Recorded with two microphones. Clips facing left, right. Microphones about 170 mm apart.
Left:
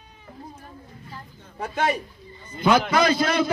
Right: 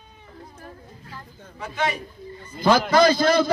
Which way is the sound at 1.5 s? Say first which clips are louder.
Left 2 dB; 45° left (ahead or behind).